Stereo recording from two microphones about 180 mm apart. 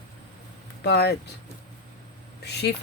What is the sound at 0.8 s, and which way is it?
Speech, 65° left (ahead or behind).